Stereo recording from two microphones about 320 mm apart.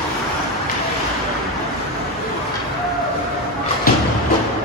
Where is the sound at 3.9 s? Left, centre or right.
Left.